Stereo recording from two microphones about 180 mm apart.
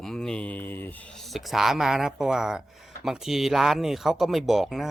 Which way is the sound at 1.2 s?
Centre (ahead or behind).